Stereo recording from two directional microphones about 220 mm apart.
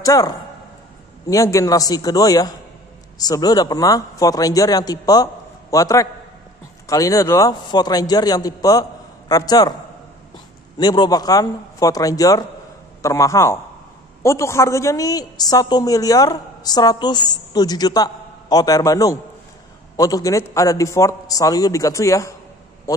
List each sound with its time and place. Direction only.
0.0 s speech: 15° left (ahead or behind)
1.3 s a woman's voice: 15° left (ahead or behind)
10.8 s a woman's voice: 20° left (ahead or behind)